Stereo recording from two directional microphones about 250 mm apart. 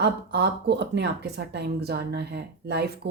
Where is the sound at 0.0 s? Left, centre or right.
Right.